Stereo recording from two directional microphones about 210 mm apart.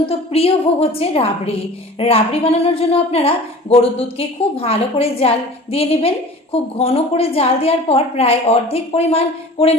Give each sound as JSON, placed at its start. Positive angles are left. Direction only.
{"t": 0.1, "sound": "a woman's voice", "side_deg": 30}